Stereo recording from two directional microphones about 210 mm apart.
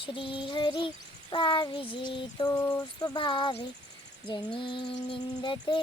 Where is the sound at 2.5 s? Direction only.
10° left (ahead or behind).